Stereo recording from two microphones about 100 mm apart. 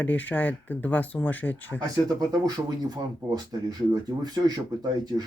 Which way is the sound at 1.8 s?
40° right (ahead or behind).